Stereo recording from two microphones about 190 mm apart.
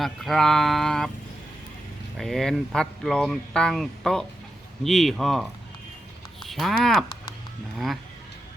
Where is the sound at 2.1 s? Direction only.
Centre (ahead or behind).